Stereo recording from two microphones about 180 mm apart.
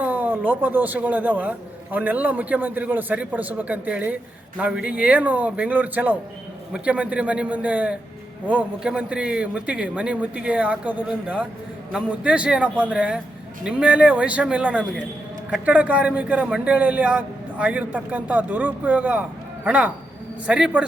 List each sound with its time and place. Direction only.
0.0 s a man's voice: 10° right (ahead or behind)